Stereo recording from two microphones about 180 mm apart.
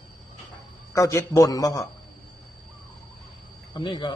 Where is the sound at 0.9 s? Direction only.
15° left (ahead or behind).